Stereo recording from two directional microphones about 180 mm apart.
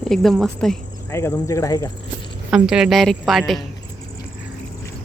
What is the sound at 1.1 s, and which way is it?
Speech, 15° left (ahead or behind).